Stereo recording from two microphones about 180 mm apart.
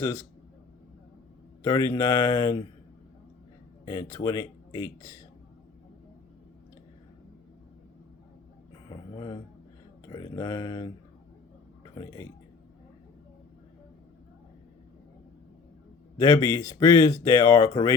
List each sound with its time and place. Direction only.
0.0 s a man's voice: 15° left (ahead or behind)
1.6 s speech: 20° left (ahead or behind)
3.8 s speech: 20° left (ahead or behind)
8.9 s a sound: 25° left (ahead or behind)
10.1 s speech: 25° left (ahead or behind)
11.9 s speech: 20° left (ahead or behind)
16.1 s speech: 20° left (ahead or behind)